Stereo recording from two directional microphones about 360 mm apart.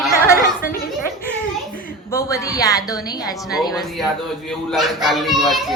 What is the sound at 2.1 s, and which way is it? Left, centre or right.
Speech, centre.